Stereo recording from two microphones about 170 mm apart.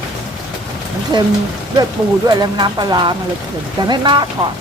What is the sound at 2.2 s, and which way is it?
Speech, 25° right (ahead or behind).